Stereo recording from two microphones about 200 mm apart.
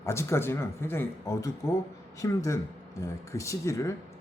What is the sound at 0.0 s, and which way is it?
Speech, 15° left (ahead or behind).